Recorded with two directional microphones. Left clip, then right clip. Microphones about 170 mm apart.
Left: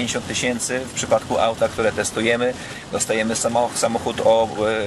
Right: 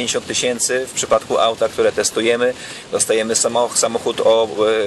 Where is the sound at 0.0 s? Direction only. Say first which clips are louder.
Right 4 dB; 25° right (ahead or behind).